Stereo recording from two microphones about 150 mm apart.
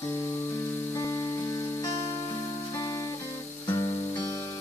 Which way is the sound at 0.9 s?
20° left (ahead or behind).